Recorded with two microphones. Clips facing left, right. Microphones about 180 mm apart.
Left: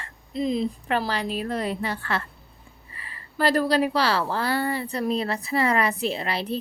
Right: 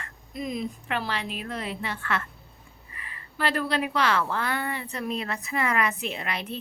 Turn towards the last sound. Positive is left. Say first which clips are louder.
# left 5 dB
turn(degrees=35)  # may be behind; listen again after turning